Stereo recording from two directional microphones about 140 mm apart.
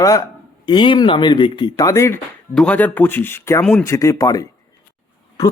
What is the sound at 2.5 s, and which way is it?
Speech, 10° left (ahead or behind).